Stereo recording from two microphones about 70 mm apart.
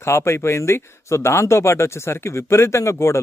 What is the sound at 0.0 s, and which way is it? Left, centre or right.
Speech, left.